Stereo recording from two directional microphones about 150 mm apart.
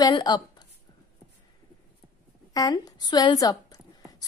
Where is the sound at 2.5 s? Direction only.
25° left (ahead or behind).